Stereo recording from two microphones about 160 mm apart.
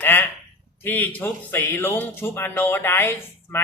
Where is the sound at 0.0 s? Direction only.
15° left (ahead or behind).